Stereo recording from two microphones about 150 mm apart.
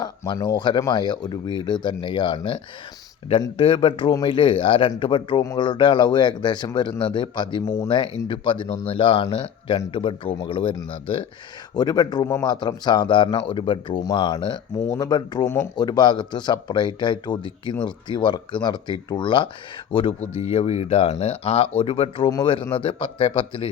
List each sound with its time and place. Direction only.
0.0 s speech: 25° left (ahead or behind)
3.6 s speech: 35° left (ahead or behind)
7.6 s speech: 20° left (ahead or behind)
7.9 s speech: 30° left (ahead or behind)